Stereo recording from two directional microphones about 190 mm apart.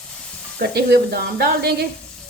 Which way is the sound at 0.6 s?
60° right (ahead or behind).